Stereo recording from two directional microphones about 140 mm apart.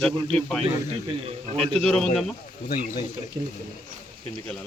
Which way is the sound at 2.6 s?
90° left.